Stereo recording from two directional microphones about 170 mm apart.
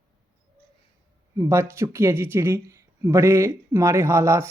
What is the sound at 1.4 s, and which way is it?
Speech, 15° right (ahead or behind).